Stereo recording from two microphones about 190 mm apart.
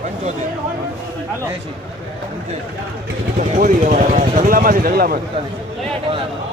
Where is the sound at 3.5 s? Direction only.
40° right (ahead or behind).